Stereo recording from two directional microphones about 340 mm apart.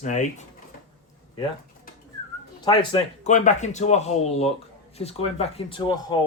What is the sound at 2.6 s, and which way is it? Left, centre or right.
A man's voice, centre.